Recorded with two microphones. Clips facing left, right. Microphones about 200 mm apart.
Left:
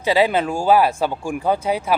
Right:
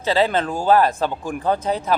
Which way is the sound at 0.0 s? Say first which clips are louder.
Left 2 dB; 10° left (ahead or behind).